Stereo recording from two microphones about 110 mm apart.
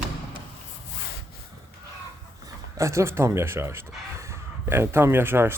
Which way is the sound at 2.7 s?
25° right (ahead or behind).